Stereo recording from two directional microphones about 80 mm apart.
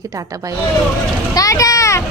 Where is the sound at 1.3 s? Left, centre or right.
Left.